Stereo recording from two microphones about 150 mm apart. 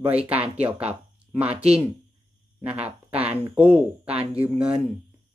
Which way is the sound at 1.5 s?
45° right (ahead or behind).